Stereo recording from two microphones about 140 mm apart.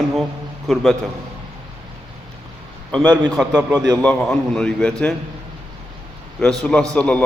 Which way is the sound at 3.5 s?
30° right (ahead or behind).